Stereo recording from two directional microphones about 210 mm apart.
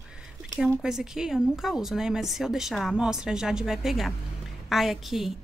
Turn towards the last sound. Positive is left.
turn(degrees=0)  # may be behind; listen again after turning